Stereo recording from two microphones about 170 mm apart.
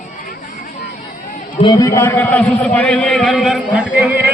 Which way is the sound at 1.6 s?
20° left (ahead or behind).